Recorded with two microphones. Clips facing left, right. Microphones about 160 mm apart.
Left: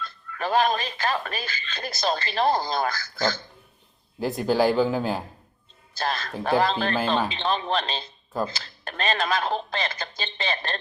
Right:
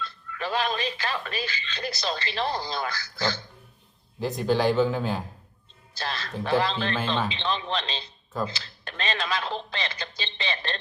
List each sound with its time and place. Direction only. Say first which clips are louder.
0.0 s speech: left 2 dB; 45° left (ahead or behind)
4.2 s speech: left 2 dB; 10° left (ahead or behind)
5.9 s speech: left 4 dB; 45° left (ahead or behind)